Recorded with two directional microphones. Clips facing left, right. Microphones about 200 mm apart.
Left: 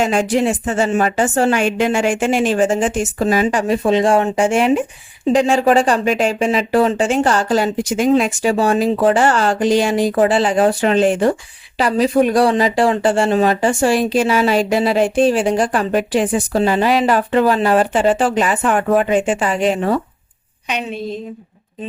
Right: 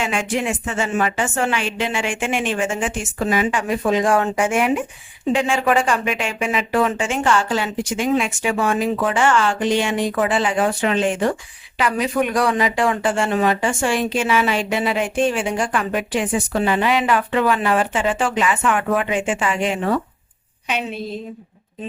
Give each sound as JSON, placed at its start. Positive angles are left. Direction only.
{"t": 0.0, "sound": "speech", "side_deg": 40}